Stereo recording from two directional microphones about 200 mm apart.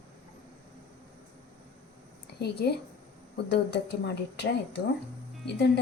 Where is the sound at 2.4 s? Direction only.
55° left (ahead or behind).